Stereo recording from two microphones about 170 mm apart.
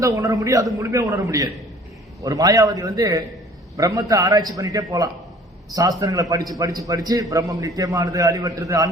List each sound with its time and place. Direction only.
0.0 s a man's voice: 20° right (ahead or behind)